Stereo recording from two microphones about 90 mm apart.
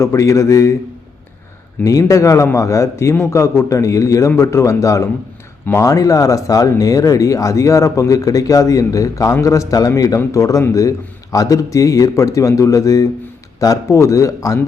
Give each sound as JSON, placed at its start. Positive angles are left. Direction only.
{"t": 0.0, "sound": "speech", "side_deg": 35}
{"t": 1.8, "sound": "speech", "side_deg": 40}